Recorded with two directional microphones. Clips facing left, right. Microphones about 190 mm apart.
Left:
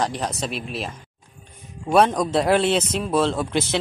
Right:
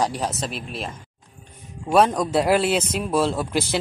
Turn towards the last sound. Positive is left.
turn(degrees=-5)  # may be behind; listen again after turning